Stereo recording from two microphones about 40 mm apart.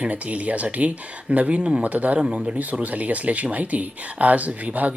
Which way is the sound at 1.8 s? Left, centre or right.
Right.